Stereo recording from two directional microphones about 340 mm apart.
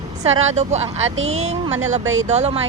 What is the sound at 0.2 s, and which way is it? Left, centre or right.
Speech, centre.